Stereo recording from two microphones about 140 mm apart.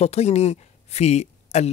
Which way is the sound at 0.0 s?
50° left (ahead or behind).